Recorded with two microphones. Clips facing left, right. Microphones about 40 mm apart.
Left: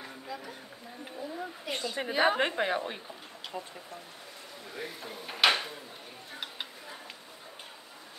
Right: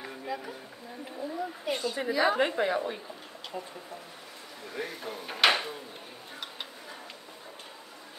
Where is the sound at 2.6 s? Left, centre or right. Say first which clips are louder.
Right 2 dB; left.